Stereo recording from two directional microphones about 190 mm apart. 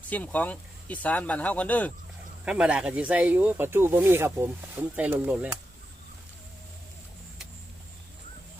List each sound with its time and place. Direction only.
0.1 s speech: 10° left (ahead or behind)
2.4 s speech: 5° right (ahead or behind)